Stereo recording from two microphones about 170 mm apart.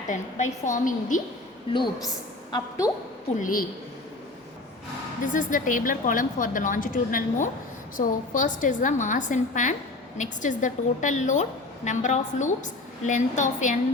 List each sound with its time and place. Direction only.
0.1 s a woman's voice: 45° left (ahead or behind)
1.7 s a woman's voice: 25° left (ahead or behind)
3.3 s a woman's voice: 55° left (ahead or behind)
5.2 s a woman's voice: 50° left (ahead or behind)